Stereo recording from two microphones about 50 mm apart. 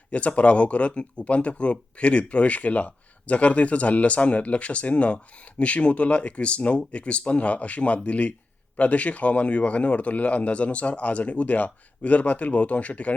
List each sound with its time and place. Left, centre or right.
0.1 s speech: left